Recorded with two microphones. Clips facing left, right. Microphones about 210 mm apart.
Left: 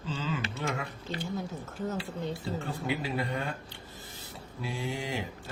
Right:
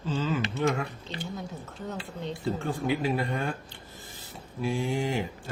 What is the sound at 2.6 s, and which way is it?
Speech, 45° right (ahead or behind).